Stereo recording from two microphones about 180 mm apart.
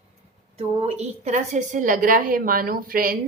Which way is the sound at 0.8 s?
35° right (ahead or behind).